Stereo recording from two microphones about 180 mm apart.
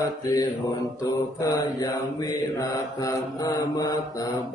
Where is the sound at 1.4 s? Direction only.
20° left (ahead or behind).